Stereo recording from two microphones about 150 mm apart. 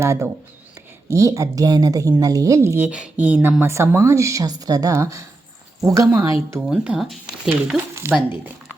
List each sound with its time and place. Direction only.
0.0 s speech: 20° right (ahead or behind)
6.6 s speech: 5° right (ahead or behind)
8.0 s speech: 15° right (ahead or behind)